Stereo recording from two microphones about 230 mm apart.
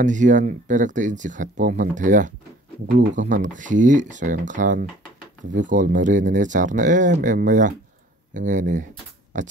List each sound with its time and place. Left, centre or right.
0.0 s speech: right